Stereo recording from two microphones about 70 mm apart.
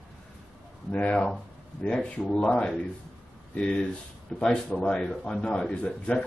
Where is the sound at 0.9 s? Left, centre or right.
Centre.